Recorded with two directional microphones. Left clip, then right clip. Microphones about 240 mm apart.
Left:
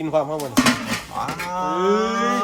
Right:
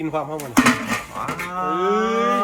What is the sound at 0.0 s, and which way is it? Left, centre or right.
Speech, left.